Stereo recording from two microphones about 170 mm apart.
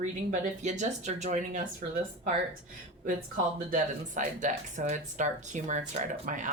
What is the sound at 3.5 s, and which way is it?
Speech, 50° right (ahead or behind).